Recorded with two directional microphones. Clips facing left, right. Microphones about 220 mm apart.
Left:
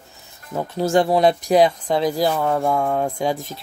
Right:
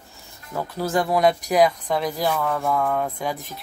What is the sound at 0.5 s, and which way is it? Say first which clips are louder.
Speech: left 5 dB; 25° left (ahead or behind).